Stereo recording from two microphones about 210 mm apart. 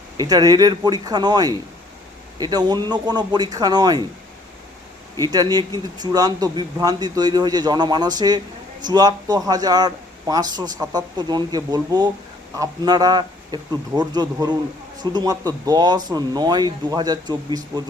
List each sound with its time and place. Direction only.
0.2 s a man's voice: 20° right (ahead or behind)
5.3 s a man's voice: 20° right (ahead or behind)